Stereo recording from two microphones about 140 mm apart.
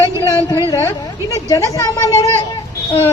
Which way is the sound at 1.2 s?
25° left (ahead or behind).